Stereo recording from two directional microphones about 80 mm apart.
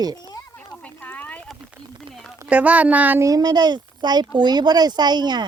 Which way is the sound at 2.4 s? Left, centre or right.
Centre.